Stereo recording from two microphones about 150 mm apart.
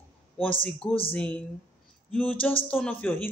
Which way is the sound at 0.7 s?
5° left (ahead or behind).